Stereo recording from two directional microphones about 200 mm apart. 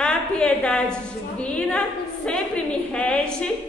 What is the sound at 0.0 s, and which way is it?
Speech, 5° left (ahead or behind).